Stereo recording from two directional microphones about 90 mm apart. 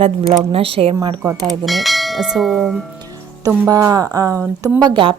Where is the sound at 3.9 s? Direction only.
40° right (ahead or behind).